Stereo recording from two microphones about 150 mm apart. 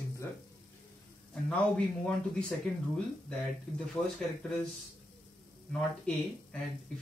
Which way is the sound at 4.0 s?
5° left (ahead or behind).